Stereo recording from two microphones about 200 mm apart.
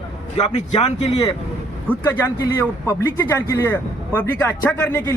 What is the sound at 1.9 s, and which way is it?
A man's voice, 10° left (ahead or behind).